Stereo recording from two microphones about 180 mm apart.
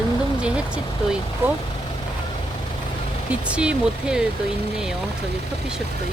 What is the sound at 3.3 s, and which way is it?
Speech, 5° right (ahead or behind).